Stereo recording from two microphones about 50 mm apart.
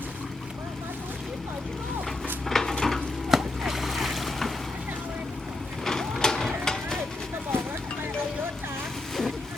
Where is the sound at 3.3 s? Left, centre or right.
Centre.